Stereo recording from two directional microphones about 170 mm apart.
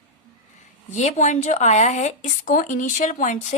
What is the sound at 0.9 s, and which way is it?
A woman's voice, 45° left (ahead or behind).